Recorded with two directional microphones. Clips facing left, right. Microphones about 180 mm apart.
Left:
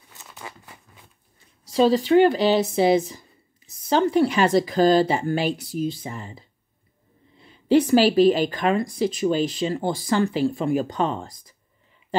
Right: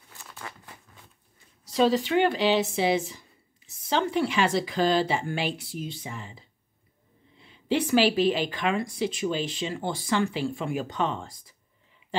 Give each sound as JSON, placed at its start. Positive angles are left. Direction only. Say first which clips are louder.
{"t": 0.2, "sound": "crumpling", "louder": "left 2 dB", "side_deg": 20}
{"t": 1.8, "sound": "speech", "louder": "left 6 dB", "side_deg": 35}
{"t": 12.1, "sound": "a sound", "louder": "left 6 dB", "side_deg": 45}